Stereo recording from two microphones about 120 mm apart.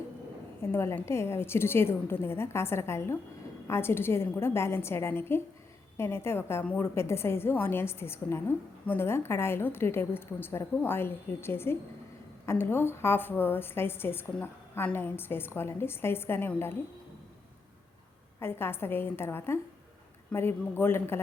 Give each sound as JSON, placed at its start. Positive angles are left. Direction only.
{"t": 0.7, "sound": "a woman's voice", "side_deg": 20}
{"t": 18.3, "sound": "a woman's voice", "side_deg": 20}